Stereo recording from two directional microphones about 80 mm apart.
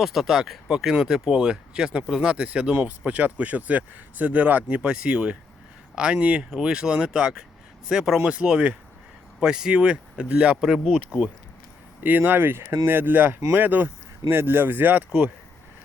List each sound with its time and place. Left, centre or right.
0.0 s speech: centre; by 12.6 s right
12.6 s speech: right